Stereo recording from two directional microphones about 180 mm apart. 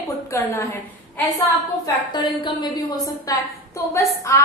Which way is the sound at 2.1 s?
25° left (ahead or behind).